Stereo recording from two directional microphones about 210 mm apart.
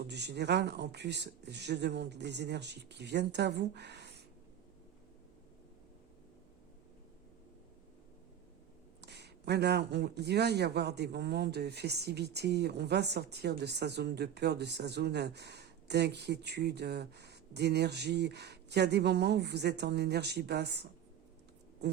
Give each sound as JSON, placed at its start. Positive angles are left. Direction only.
{"t": 0.0, "sound": "a man's voice", "side_deg": -55}
{"t": 9.0, "sound": "a man's voice", "side_deg": -55}